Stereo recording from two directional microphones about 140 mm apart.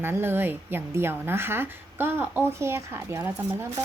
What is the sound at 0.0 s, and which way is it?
A woman's voice, 15° right (ahead or behind).